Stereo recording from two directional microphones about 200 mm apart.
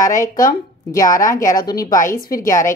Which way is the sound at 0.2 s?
15° left (ahead or behind).